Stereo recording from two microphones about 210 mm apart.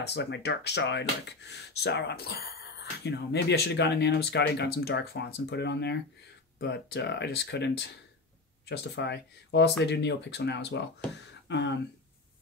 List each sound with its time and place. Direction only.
0.0 s speech: 55° left (ahead or behind)